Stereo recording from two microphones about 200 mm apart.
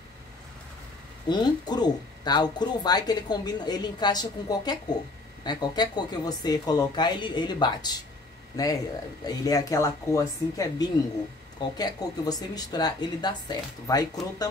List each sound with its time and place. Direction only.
1.3 s speech: 20° left (ahead or behind)